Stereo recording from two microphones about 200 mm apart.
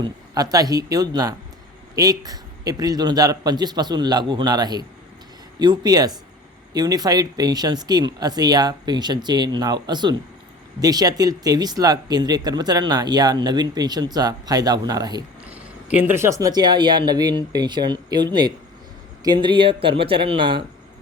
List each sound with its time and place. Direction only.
0.0 s speech: 20° right (ahead or behind)
15.4 s speech: 5° right (ahead or behind); by 20.7 s 25° right (ahead or behind)